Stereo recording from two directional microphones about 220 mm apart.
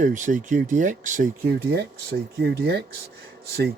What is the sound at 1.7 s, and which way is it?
Speech, 45° right (ahead or behind).